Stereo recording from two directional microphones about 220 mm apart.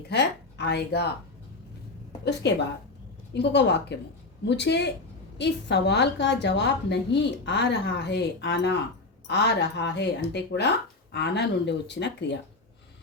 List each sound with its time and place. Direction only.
0.1 s speech: 50° left (ahead or behind)
2.4 s a woman's voice: 50° left (ahead or behind)